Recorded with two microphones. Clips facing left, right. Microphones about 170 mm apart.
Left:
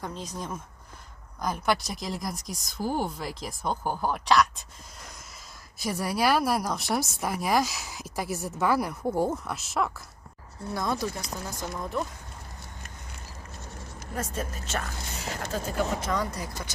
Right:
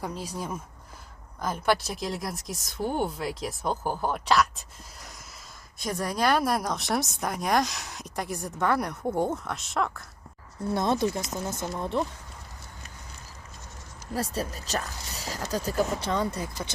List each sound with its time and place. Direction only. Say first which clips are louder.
0.0 s a woman's voice: right 2 dB; 10° right (ahead or behind)
5.8 s a woman's voice: even; 5° left (ahead or behind)
10.7 s speech: right 4 dB; 25° right (ahead or behind)
14.2 s speech: right 2 dB; 35° right (ahead or behind)